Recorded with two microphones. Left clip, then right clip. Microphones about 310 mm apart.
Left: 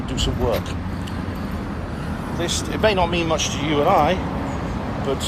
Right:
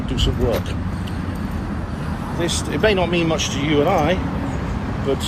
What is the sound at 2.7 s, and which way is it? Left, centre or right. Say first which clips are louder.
Speech: right 1 dB; centre.